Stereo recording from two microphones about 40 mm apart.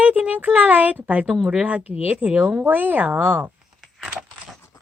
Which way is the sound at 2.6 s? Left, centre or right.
Right.